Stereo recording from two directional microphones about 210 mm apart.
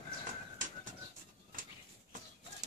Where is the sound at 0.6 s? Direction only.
40° right (ahead or behind).